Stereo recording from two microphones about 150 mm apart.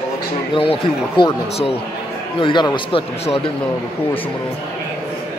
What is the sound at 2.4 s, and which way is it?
Speech, 30° left (ahead or behind).